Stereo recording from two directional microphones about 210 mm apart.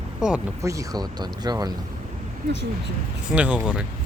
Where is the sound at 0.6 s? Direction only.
15° right (ahead or behind).